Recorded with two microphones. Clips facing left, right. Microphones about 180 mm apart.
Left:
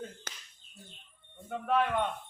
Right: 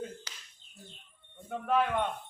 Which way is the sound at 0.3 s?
50° left (ahead or behind).